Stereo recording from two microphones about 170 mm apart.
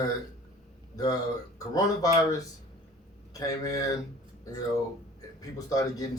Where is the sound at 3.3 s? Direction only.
20° left (ahead or behind).